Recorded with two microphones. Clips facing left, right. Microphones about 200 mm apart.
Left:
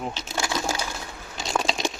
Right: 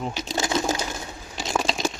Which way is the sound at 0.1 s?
15° right (ahead or behind).